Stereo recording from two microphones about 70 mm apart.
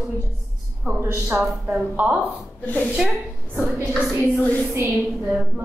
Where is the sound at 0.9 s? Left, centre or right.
Right.